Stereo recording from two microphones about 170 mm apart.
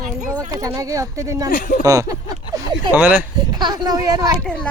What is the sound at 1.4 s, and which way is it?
Speech, 50° left (ahead or behind).